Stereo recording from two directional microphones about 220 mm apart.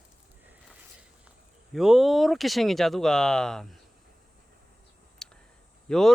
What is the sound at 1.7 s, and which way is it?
Speech, centre (ahead or behind).